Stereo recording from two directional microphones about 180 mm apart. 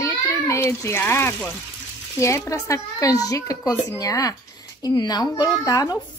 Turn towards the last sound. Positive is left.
turn(degrees=20)  # may be behind; listen again after turning